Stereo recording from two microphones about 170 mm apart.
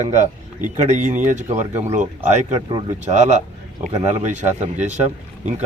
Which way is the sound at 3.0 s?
45° right (ahead or behind).